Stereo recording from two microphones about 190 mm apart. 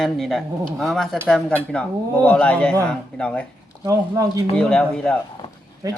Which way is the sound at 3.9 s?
15° right (ahead or behind).